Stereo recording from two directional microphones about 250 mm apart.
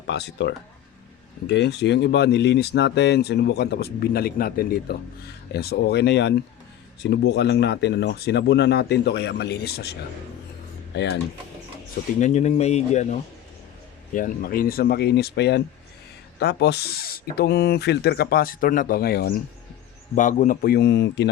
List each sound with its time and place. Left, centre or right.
0.1 s speech: left
12.2 s speech: left